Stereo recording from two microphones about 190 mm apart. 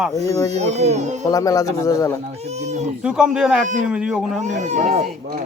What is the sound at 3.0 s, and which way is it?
Speech, 5° right (ahead or behind).